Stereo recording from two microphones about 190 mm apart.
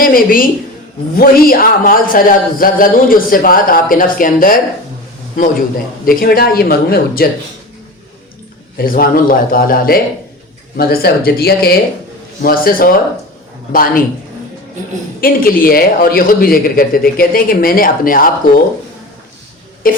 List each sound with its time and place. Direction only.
0.0 s a woman's voice: 45° left (ahead or behind)
6.1 s a man's voice: 50° left (ahead or behind)
8.8 s a man's voice: 50° left (ahead or behind)
15.2 s a man's voice: 50° left (ahead or behind)
19.9 s a man's voice: 50° left (ahead or behind)